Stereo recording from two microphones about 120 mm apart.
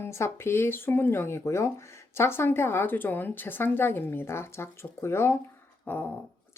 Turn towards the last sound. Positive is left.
turn(degrees=15)  # may be behind; listen again after turning